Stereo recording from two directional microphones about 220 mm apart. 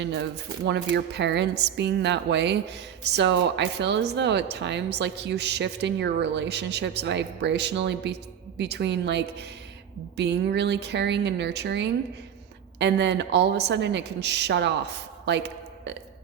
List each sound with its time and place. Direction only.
0.0 s speech: 50° right (ahead or behind)